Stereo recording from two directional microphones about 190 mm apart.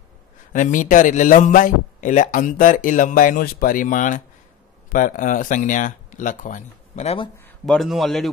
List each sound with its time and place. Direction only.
0.5 s a man's voice: 40° left (ahead or behind)
7.6 s a man's voice: centre (ahead or behind)